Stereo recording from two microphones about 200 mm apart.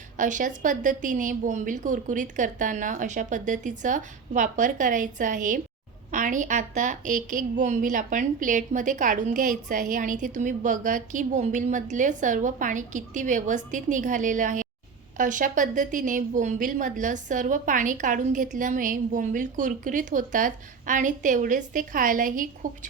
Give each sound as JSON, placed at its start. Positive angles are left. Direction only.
{"t": 0.2, "sound": "a woman's voice", "side_deg": -40}